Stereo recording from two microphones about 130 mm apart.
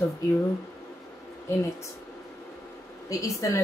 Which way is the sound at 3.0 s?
25° left (ahead or behind).